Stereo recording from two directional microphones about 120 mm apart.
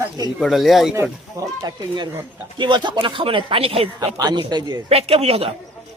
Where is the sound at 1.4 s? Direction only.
30° right (ahead or behind); by 3.8 s 50° right (ahead or behind).